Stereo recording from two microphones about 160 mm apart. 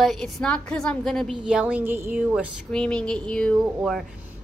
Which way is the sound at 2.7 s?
5° left (ahead or behind).